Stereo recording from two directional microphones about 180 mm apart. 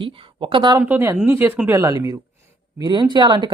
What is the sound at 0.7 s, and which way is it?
Speech, 10° right (ahead or behind).